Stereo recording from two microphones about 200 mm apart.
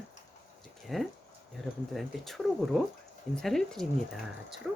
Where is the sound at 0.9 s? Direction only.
Centre (ahead or behind).